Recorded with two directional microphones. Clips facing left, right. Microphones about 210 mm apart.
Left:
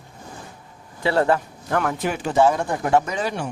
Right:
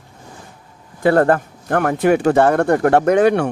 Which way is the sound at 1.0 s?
50° right (ahead or behind).